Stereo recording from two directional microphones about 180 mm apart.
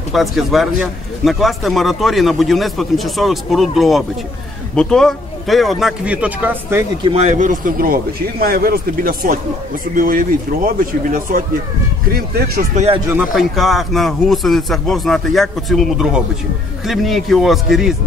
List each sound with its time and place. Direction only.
0.1 s a man's voice: centre (ahead or behind)
7.0 s a man's voice: 30° right (ahead or behind); by 12.6 s 60° right (ahead or behind)
12.7 s speech: 35° right (ahead or behind)
13.1 s a man's voice: 5° right (ahead or behind)